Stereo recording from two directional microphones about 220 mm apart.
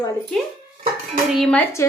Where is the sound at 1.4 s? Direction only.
5° left (ahead or behind).